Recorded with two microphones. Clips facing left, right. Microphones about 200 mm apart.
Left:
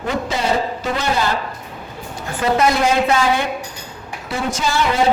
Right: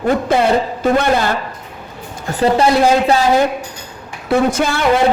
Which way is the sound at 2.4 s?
30° right (ahead or behind).